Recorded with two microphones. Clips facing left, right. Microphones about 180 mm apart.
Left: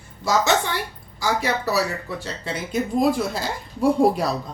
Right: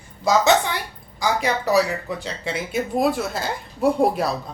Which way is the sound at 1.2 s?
15° right (ahead or behind).